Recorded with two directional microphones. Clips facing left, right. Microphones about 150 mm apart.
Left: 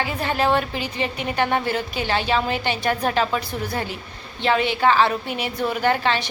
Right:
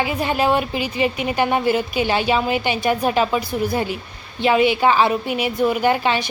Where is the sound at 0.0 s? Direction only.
15° right (ahead or behind).